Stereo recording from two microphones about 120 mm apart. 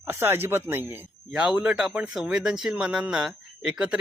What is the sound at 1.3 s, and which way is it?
Speech, 5° right (ahead or behind).